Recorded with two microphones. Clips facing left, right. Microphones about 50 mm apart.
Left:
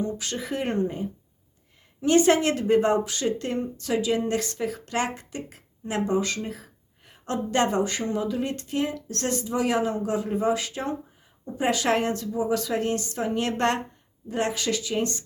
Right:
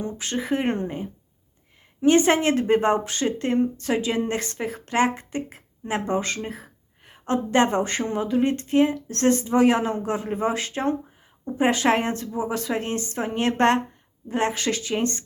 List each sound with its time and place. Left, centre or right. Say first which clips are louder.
0.0 s speech: right 1 dB; right